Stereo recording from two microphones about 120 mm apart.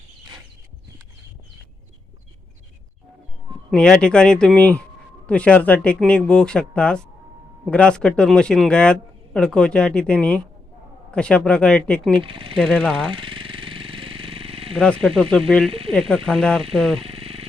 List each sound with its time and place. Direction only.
3.7 s speech: 5° left (ahead or behind)
12.2 s speech: 45° right (ahead or behind)
12.5 s speech: 5° left (ahead or behind)
13.1 s jackhammer: 45° right (ahead or behind)
14.8 s speech: 5° left (ahead or behind)
17.0 s a sound: 50° right (ahead or behind)